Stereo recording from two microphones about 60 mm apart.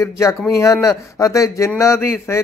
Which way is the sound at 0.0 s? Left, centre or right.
Left.